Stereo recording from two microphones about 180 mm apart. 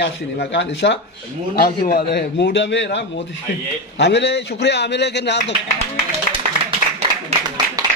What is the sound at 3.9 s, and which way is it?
A man's voice, 70° left (ahead or behind).